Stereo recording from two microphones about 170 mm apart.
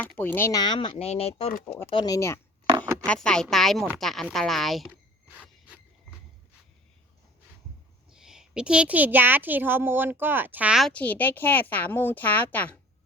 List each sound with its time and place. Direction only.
0.2 s speech: 10° left (ahead or behind)
0.6 s speech: 30° left (ahead or behind)
1.9 s speech: 25° left (ahead or behind)
2.7 s a sound: 15° right (ahead or behind)
3.1 s a woman's voice: 5° left (ahead or behind)
8.1 s a woman's voice: 5° right (ahead or behind)